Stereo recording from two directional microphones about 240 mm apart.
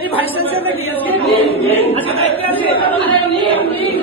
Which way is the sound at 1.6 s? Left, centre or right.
Left.